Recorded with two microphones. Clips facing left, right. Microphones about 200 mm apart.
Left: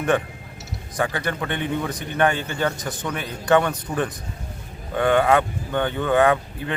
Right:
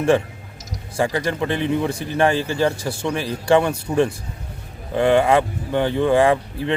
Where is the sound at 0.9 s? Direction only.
25° right (ahead or behind).